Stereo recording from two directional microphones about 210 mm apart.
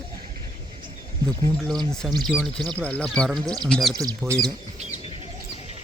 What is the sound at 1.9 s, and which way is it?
Speech, centre (ahead or behind).